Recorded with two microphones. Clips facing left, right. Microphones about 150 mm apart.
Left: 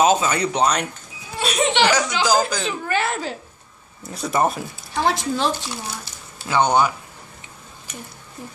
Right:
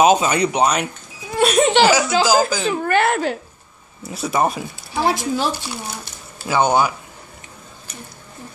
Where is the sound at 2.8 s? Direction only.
60° right (ahead or behind).